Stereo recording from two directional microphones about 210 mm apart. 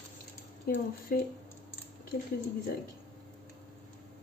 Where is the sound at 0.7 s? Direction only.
45° left (ahead or behind).